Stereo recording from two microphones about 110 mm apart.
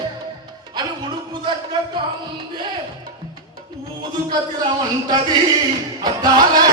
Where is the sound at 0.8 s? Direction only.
40° right (ahead or behind).